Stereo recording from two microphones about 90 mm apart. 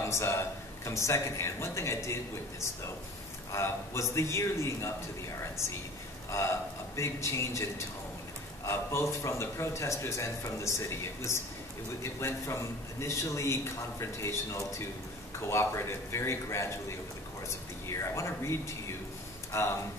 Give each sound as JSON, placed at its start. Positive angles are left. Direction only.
{"t": 0.0, "sound": "speech", "side_deg": 30}
{"t": 3.5, "sound": "a man's voice", "side_deg": 30}
{"t": 6.3, "sound": "a man's voice", "side_deg": 35}
{"t": 8.6, "sound": "a man's voice", "side_deg": 30}
{"t": 17.8, "sound": "a man's voice", "side_deg": 35}